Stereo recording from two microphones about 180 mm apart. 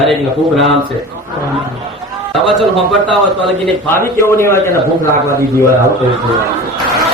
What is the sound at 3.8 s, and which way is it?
A man's voice, 15° left (ahead or behind).